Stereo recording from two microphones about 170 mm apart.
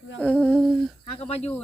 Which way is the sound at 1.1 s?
35° left (ahead or behind).